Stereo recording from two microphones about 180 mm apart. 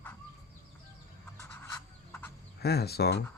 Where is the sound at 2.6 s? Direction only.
60° left (ahead or behind).